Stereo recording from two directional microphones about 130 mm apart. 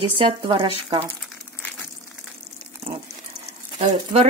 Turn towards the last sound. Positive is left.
turn(degrees=-55)  # may be behind; listen again after turning